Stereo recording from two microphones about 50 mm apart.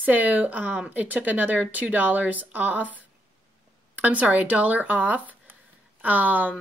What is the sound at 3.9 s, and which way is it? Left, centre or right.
A woman's voice, right.